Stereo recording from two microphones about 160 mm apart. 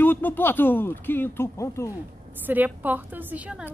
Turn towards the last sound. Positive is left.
turn(degrees=-10)  # may be behind; listen again after turning